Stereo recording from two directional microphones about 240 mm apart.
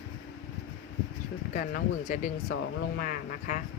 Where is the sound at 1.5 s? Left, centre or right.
Left.